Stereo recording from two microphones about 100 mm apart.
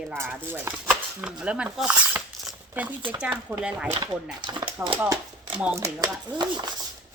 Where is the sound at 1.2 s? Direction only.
10° right (ahead or behind).